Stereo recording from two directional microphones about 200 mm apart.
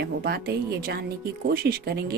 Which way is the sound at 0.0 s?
50° right (ahead or behind).